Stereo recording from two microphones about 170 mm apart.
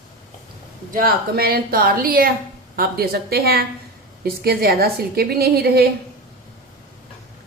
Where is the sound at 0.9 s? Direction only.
60° right (ahead or behind).